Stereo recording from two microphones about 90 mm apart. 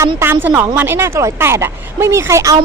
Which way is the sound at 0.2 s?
25° right (ahead or behind).